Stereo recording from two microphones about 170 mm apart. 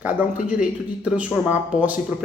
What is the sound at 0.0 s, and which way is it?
Speech, 10° right (ahead or behind).